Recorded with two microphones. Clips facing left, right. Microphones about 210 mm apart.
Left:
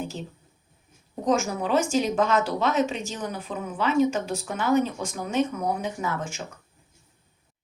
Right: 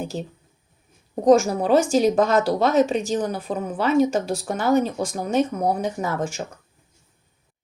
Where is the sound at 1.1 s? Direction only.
40° right (ahead or behind).